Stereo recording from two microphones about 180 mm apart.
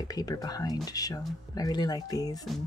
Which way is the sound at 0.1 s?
20° left (ahead or behind).